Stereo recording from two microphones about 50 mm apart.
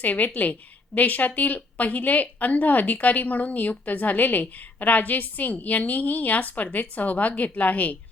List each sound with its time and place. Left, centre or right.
0.0 s a woman's voice: left